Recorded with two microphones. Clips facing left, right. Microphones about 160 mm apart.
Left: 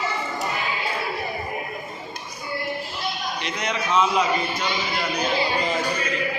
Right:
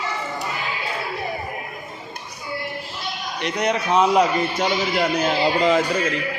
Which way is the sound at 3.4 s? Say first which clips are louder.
Right 8 dB; 60° right (ahead or behind).